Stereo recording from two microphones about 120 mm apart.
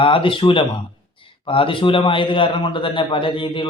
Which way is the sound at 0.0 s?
45° left (ahead or behind).